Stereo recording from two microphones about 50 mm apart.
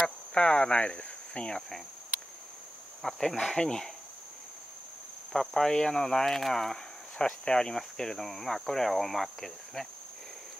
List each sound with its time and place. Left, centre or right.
0.0 s speech: centre
3.0 s speech: centre
5.3 s speech: centre